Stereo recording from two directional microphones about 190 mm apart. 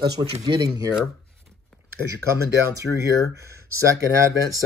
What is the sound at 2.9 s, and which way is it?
Speech, 10° left (ahead or behind).